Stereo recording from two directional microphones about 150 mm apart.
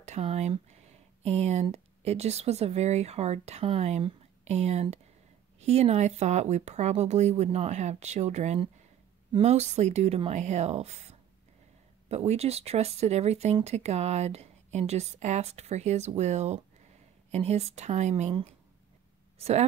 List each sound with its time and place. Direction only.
0.0 s speech: 45° right (ahead or behind)